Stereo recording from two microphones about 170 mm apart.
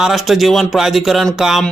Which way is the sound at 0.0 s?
Centre (ahead or behind).